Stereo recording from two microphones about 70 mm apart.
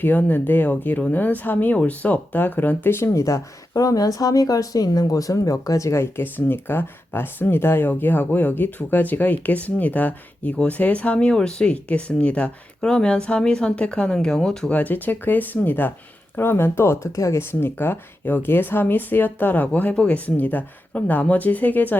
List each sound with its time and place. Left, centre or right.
0.0 s speech: left; by 14.7 s centre
14.7 s speech: left